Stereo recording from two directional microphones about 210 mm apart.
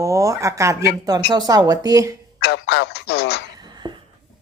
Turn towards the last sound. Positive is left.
turn(degrees=-20)  # may be behind; listen again after turning